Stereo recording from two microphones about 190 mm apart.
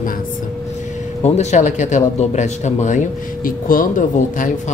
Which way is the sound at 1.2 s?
35° left (ahead or behind).